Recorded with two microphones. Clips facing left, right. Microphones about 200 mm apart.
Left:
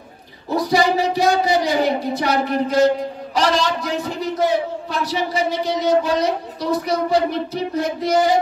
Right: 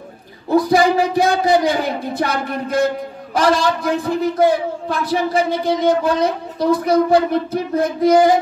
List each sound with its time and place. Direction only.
0.7 s a man's voice: 50° right (ahead or behind)